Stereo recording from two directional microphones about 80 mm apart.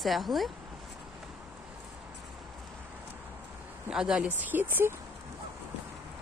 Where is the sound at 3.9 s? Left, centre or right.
Centre; by 4.9 s right.